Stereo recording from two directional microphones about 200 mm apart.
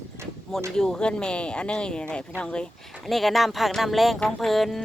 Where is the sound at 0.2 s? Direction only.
15° right (ahead or behind).